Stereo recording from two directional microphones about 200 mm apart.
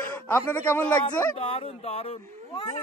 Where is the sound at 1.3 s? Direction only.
30° left (ahead or behind).